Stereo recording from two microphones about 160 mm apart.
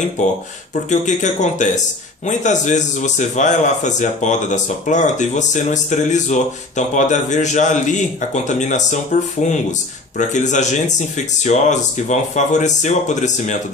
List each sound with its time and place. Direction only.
0.2 s a man's voice: 50° left (ahead or behind)